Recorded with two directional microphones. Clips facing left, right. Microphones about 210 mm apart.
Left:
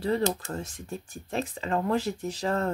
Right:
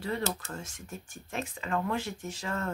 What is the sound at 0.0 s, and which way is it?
Speech, 35° left (ahead or behind).